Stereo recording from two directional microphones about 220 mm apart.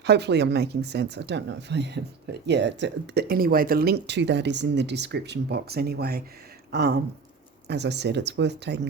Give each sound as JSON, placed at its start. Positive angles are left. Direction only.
{"t": 0.0, "sound": "speech", "side_deg": -50}